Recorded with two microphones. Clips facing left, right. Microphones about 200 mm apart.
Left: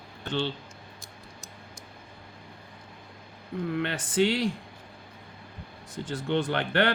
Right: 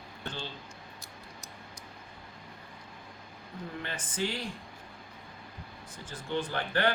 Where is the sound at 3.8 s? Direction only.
70° left (ahead or behind).